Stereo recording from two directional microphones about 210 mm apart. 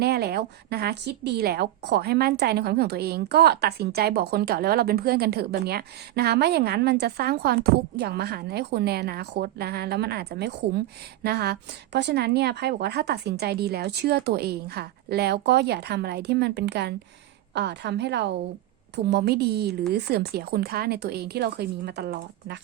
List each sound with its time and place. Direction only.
0.0 s a woman's voice: 50° right (ahead or behind)